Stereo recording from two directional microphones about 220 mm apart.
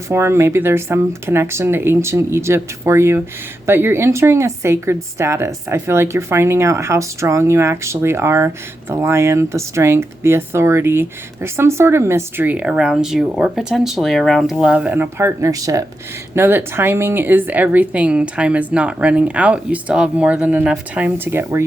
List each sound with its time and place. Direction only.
0.1 s speech: 10° right (ahead or behind)